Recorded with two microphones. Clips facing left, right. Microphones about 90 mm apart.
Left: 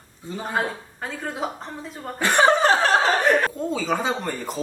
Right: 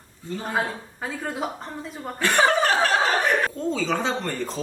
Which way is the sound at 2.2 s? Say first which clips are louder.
Left 2 dB; 20° left (ahead or behind).